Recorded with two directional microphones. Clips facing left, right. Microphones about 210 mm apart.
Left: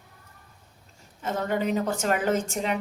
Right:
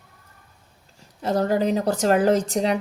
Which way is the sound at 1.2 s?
35° right (ahead or behind).